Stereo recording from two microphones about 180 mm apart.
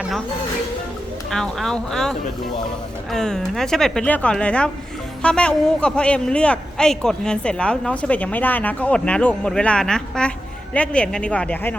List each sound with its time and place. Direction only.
1.3 s a man's voice: centre (ahead or behind)